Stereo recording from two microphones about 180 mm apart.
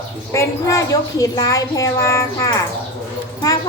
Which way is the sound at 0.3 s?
15° left (ahead or behind).